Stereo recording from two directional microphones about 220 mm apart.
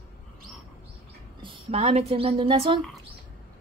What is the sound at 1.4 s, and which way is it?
A woman's voice, 25° right (ahead or behind).